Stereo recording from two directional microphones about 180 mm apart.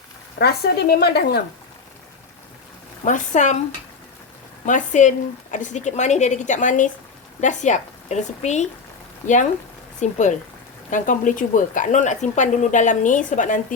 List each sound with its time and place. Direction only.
0.3 s speech: 65° left (ahead or behind)
3.0 s speech: 45° left (ahead or behind)
4.6 s a woman's voice: 45° left (ahead or behind)